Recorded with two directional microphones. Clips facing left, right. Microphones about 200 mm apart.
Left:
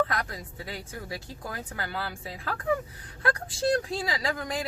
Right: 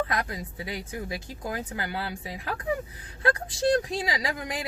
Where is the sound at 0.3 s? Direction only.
15° right (ahead or behind).